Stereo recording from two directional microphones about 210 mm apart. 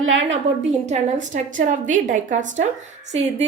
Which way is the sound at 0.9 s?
35° right (ahead or behind).